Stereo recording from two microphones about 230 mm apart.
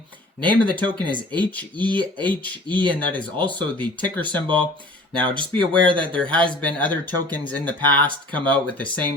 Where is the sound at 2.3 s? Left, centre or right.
Centre.